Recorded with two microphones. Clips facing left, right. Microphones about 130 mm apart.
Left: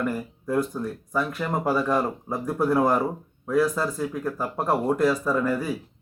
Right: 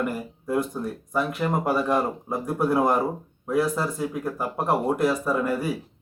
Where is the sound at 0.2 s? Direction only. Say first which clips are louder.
Even; 5° right (ahead or behind).